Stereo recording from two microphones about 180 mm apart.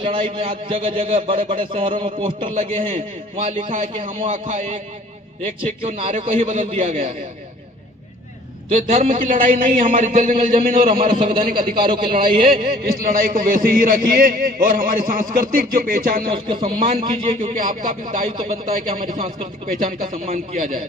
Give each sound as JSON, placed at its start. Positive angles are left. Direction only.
{"t": 0.0, "sound": "a man's voice", "side_deg": -30}
{"t": 5.8, "sound": "a man's voice", "side_deg": -35}
{"t": 8.7, "sound": "a man's voice", "side_deg": -40}
{"t": 11.2, "sound": "a man's voice", "side_deg": -30}
{"t": 12.6, "sound": "a man's voice", "side_deg": -55}
{"t": 16.3, "sound": "a man's voice", "side_deg": -25}
{"t": 17.6, "sound": "a man's voice", "side_deg": -50}
{"t": 19.4, "sound": "a man's voice", "side_deg": -35}